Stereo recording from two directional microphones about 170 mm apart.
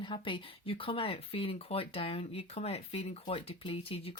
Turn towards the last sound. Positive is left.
turn(degrees=35)  # may be behind; listen again after turning